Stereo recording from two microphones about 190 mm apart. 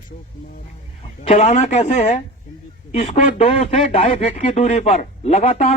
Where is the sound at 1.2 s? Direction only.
35° left (ahead or behind).